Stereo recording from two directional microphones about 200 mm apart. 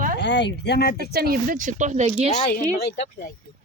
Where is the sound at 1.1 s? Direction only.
50° right (ahead or behind); by 2.3 s 35° right (ahead or behind).